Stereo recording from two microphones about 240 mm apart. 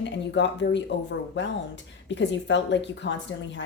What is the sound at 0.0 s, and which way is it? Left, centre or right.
Speech, left.